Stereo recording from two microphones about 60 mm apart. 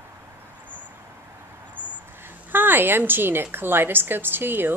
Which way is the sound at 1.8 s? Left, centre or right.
Right.